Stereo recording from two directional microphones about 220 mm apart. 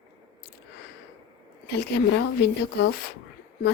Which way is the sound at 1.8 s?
50° left (ahead or behind).